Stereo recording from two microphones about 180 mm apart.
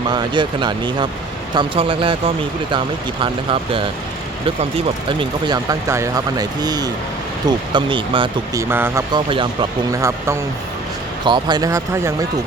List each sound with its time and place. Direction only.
0.1 s speech: 25° right (ahead or behind)
5.0 s speech: 25° right (ahead or behind)
8.7 s speech: 10° right (ahead or behind)
9.1 s speech: 25° right (ahead or behind)
10.0 s speech: 15° right (ahead or behind)